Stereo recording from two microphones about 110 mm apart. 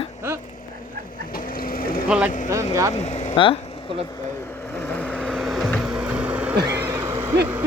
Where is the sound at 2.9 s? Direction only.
85° left.